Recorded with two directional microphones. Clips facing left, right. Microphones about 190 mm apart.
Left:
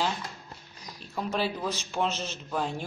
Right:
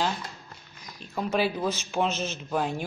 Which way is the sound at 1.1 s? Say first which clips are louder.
Right 3 dB; 5° right (ahead or behind).